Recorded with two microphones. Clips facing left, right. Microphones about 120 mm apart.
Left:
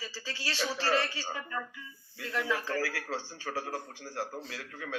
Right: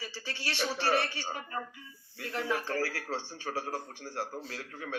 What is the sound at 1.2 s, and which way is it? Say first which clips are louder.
A man's voice: even; 25° right (ahead or behind).